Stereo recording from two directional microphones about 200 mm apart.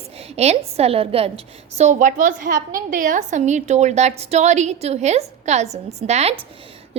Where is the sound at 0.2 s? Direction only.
30° right (ahead or behind).